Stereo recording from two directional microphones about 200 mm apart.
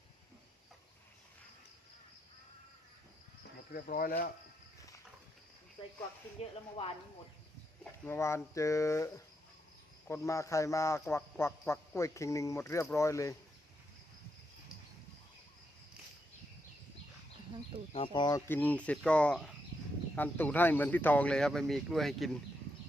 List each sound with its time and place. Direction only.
3.7 s speech: 45° left (ahead or behind)
6.4 s speech: 30° left (ahead or behind)
8.0 s speech: 15° left (ahead or behind)
17.9 s speech: 25° left (ahead or behind); by 22.3 s centre (ahead or behind)